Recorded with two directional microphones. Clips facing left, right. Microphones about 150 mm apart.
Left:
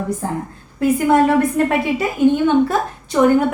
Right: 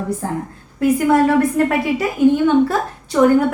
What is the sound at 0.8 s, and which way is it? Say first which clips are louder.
A woman's voice: even; 25° left (ahead or behind).